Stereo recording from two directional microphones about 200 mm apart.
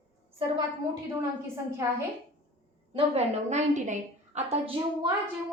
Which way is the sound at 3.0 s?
35° right (ahead or behind).